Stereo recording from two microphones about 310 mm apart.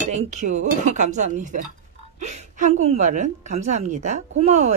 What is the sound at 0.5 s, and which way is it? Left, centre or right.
Speech, right.